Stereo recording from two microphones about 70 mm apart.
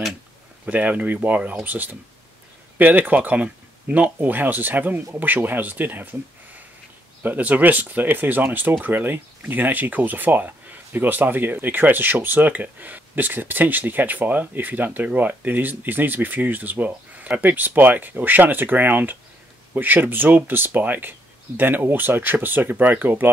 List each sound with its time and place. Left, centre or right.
0.7 s speech: right
7.2 s speech: right